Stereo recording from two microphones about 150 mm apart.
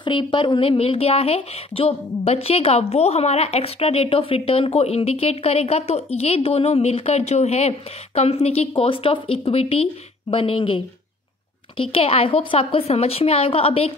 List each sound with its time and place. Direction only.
0.0 s speech: 30° left (ahead or behind)